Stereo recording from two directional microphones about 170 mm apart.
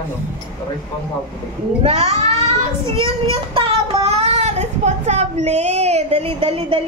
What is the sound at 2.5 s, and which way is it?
Child singing, 35° right (ahead or behind).